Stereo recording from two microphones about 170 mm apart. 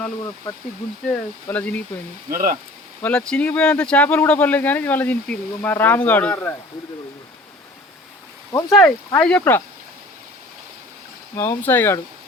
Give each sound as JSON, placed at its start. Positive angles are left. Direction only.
{"t": 1.5, "sound": "speech", "side_deg": 10}
{"t": 2.3, "sound": "speech", "side_deg": -55}
{"t": 3.0, "sound": "speech", "side_deg": 5}
{"t": 8.5, "sound": "speech", "side_deg": 10}
{"t": 11.3, "sound": "speech", "side_deg": 15}